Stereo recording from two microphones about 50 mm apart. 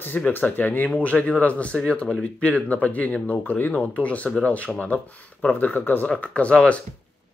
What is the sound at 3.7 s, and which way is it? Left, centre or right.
Speech, left.